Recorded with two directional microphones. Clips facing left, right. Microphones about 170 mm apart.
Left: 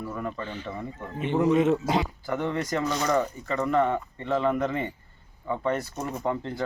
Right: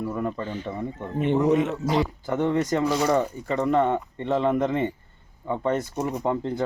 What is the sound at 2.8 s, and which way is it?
Speech, 10° right (ahead or behind).